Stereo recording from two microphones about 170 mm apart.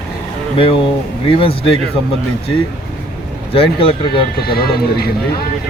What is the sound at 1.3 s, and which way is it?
Speech, 30° left (ahead or behind).